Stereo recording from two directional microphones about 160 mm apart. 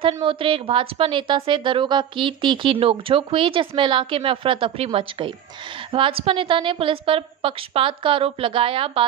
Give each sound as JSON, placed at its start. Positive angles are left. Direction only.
{"t": 0.1, "sound": "a woman's voice", "side_deg": -35}